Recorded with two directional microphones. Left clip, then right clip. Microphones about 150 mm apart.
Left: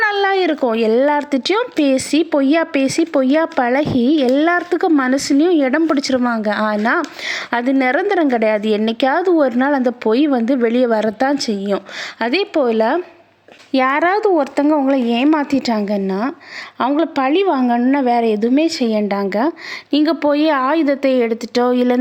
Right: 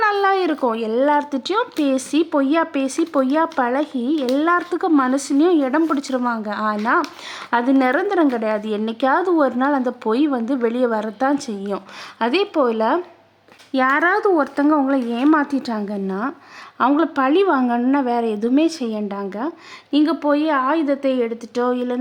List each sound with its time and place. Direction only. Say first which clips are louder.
0.0 s speech: left 2 dB; 15° left (ahead or behind); by 21.9 s 30° left (ahead or behind)